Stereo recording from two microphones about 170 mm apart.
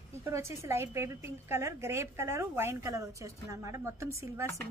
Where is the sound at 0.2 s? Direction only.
15° right (ahead or behind).